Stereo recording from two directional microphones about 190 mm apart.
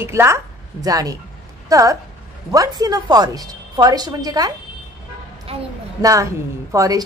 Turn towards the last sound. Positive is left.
turn(degrees=-15)  # may be behind; listen again after turning